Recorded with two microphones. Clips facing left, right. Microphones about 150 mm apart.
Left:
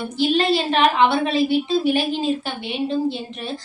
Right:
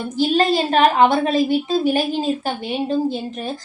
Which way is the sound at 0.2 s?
45° right (ahead or behind).